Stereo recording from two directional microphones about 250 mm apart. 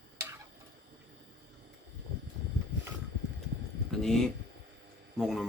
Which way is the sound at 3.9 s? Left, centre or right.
Centre.